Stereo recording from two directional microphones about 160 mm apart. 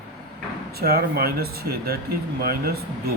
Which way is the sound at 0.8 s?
75° right (ahead or behind).